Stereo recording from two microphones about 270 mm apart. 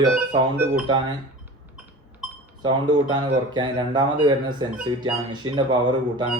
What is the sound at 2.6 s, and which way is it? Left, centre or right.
Speech, centre.